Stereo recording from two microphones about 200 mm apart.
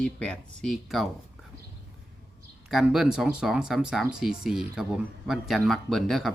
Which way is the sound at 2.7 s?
Centre (ahead or behind).